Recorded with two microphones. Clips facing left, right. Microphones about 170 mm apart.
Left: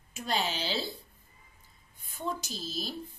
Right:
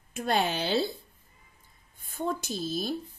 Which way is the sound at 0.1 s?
60° right (ahead or behind).